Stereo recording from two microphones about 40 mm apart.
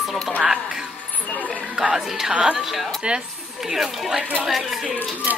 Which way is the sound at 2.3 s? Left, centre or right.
Right.